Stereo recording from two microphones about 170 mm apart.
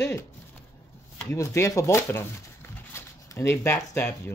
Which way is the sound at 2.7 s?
15° left (ahead or behind).